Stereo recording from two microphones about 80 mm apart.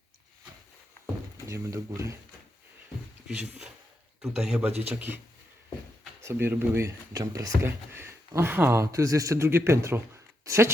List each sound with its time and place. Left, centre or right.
1.5 s speech: right
3.2 s a man's voice: centre
4.5 s a man's voice: right
6.2 s a man's voice: right
6.8 s speech: right
7.6 s speech: right